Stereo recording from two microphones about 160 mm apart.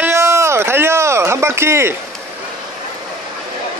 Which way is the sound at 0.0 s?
15° right (ahead or behind).